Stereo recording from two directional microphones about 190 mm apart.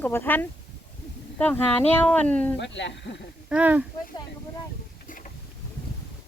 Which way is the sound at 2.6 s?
70° left (ahead or behind).